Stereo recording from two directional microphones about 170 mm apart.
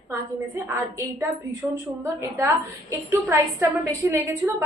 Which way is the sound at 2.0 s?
15° right (ahead or behind).